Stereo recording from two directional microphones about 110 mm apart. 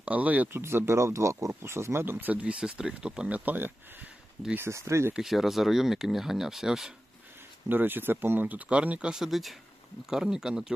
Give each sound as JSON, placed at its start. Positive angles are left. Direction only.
{"t": 0.0, "sound": "speech", "side_deg": -15}
{"t": 5.1, "sound": "speech", "side_deg": 0}
{"t": 7.7, "sound": "speech", "side_deg": -20}